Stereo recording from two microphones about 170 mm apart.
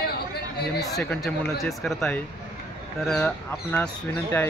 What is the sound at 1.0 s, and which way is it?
Speech, centre (ahead or behind).